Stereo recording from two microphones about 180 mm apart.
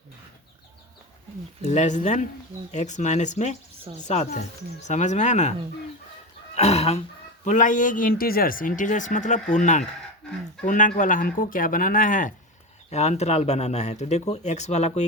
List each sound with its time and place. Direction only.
1.6 s speech: 40° left (ahead or behind)
6.6 s speech: 35° left (ahead or behind)